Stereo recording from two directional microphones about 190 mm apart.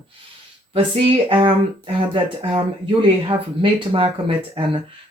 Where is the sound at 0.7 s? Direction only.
25° right (ahead or behind).